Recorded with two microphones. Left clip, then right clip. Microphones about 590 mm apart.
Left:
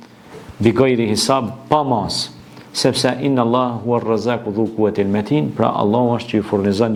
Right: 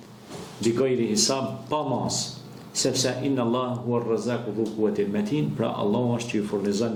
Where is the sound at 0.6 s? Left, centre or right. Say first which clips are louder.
Left 9 dB; left.